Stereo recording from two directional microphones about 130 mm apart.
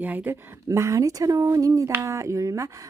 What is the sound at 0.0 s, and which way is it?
Speech, 15° right (ahead or behind).